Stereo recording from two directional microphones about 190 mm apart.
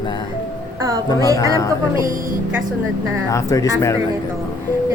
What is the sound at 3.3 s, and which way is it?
Speech, 20° left (ahead or behind).